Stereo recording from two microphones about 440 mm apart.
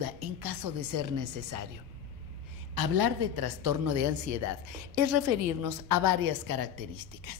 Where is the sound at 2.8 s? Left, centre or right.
Right.